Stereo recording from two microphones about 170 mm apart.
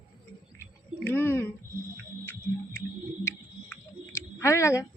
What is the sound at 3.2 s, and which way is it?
Clicking, 15° left (ahead or behind).